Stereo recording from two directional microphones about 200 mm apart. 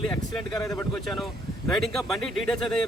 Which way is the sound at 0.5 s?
15° left (ahead or behind).